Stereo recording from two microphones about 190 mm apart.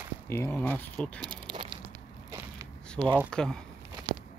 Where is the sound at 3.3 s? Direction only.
5° left (ahead or behind).